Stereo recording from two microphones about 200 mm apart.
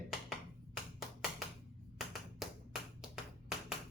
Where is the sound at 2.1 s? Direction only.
Centre (ahead or behind).